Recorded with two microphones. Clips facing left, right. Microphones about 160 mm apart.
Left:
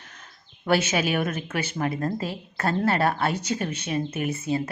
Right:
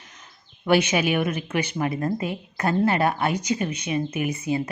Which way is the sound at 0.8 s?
45° left (ahead or behind).